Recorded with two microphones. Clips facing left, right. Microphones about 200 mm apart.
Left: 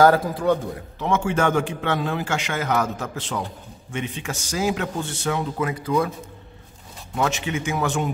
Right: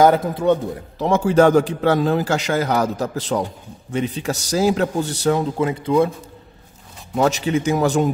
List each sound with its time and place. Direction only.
0.0 s a man's voice: 20° right (ahead or behind)
0.9 s a man's voice: 35° right (ahead or behind)
7.2 s a man's voice: 40° right (ahead or behind)